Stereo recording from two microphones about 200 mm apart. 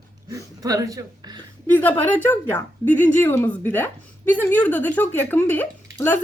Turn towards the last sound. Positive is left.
turn(degrees=10)  # may be behind; listen again after turning